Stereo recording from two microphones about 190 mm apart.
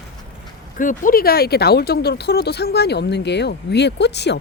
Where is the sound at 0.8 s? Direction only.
45° left (ahead or behind).